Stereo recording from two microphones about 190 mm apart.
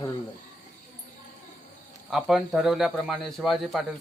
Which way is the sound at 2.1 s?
Centre (ahead or behind).